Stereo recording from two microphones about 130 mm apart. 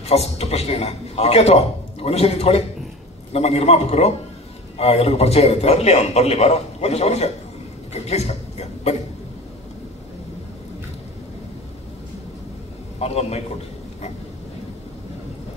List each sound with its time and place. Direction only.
0.0 s a man's voice: 55° left (ahead or behind)
7.9 s a sound: 55° left (ahead or behind)
13.0 s a man's voice: 55° left (ahead or behind)